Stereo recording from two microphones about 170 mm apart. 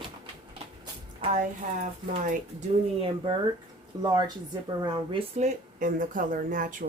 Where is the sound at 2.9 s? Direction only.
30° right (ahead or behind).